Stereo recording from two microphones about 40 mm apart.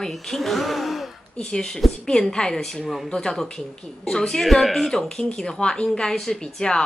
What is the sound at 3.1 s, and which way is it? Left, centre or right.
A woman's voice, centre.